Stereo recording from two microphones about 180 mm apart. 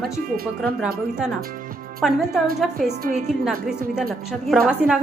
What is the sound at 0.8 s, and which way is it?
A woman's voice, 5° right (ahead or behind).